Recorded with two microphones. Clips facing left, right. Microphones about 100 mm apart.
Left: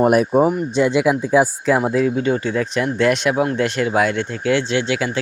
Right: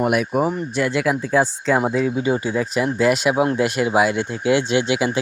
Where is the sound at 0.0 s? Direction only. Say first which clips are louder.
Left 5 dB; 35° left (ahead or behind); by 1.8 s 10° left (ahead or behind).